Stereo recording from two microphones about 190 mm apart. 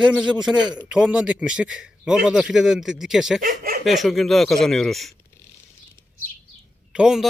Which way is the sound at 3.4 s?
50° right (ahead or behind).